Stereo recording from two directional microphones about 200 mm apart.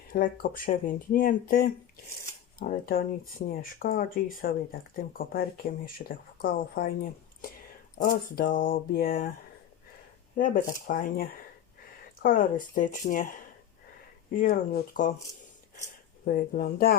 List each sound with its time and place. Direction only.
0.1 s speech: 45° left (ahead or behind)
8.0 s speech: 45° left (ahead or behind)
10.3 s speech: 40° left (ahead or behind)
14.3 s speech: 45° left (ahead or behind)
16.2 s speech: 45° left (ahead or behind)